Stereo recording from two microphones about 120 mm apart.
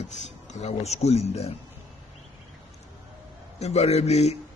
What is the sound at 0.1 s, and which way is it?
A man's voice, 80° left.